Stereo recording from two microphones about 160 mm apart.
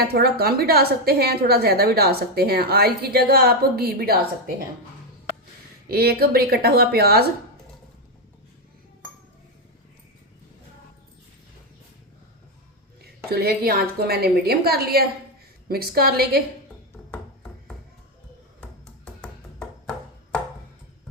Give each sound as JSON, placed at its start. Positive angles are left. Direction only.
{"t": 0.0, "sound": "a woman's voice", "side_deg": -75}
{"t": 5.9, "sound": "a woman's voice", "side_deg": -75}
{"t": 13.0, "sound": "a woman's voice", "side_deg": -75}
{"t": 18.6, "sound": "music", "side_deg": 5}